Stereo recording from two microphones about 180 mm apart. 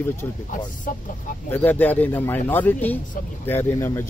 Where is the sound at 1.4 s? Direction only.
10° left (ahead or behind).